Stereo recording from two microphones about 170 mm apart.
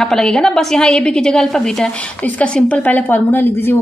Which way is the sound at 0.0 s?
5° left (ahead or behind).